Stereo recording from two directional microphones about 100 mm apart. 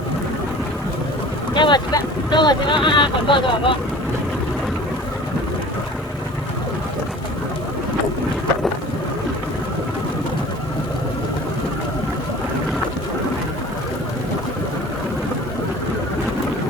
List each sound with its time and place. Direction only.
1.5 s speech: 50° left (ahead or behind)